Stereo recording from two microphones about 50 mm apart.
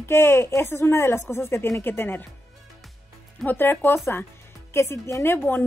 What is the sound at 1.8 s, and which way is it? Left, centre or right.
Speech, left.